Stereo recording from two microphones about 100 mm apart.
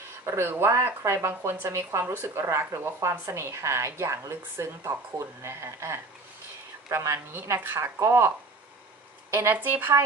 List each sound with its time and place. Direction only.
0.2 s speech: 25° right (ahead or behind)
9.3 s speech: 20° right (ahead or behind)